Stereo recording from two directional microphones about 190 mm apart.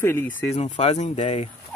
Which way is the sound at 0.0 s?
10° left (ahead or behind).